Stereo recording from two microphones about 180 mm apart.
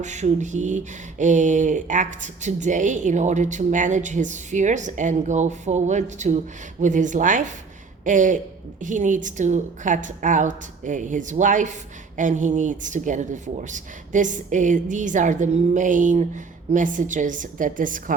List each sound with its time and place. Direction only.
0.0 s a woman's voice: 40° right (ahead or behind)